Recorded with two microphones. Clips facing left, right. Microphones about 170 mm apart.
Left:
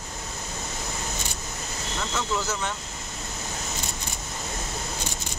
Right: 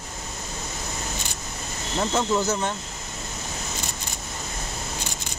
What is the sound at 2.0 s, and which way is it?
Speech, 35° right (ahead or behind).